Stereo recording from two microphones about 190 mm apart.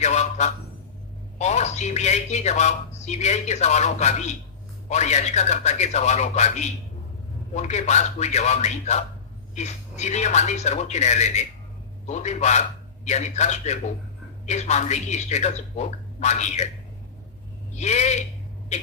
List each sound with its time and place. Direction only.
0.0 s speech: 35° left (ahead or behind)
17.7 s speech: 35° left (ahead or behind)